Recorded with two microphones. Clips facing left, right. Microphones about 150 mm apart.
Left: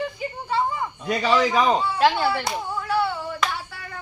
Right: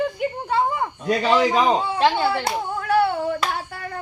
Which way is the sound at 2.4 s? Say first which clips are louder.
Right 3 dB; 55° right (ahead or behind).